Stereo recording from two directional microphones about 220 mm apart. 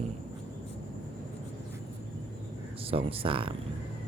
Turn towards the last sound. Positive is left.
turn(degrees=-25)  # may be behind; listen again after turning